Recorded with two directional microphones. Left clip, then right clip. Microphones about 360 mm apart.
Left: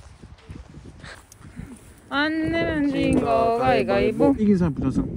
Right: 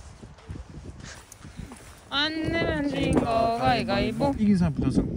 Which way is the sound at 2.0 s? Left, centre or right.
Left.